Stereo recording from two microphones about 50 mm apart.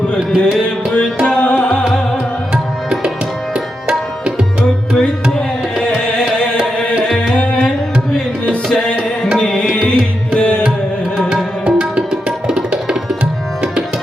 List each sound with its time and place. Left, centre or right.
0.2 s music: centre
0.9 s music: centre
6.3 s music: centre
7.3 s tabla: left
9.8 s music: centre
11.6 s music: centre